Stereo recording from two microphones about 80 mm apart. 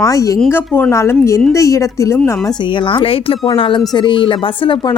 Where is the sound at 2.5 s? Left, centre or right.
Left.